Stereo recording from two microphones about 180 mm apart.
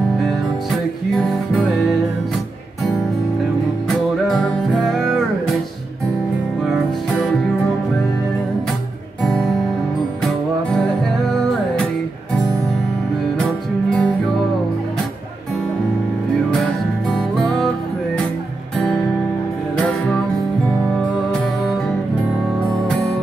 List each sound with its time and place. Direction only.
0.3 s music: centre (ahead or behind)
3.9 s music: 5° left (ahead or behind)
9.2 s music: centre (ahead or behind)
13.4 s music: 5° left (ahead or behind)
19.8 s music: 5° left (ahead or behind)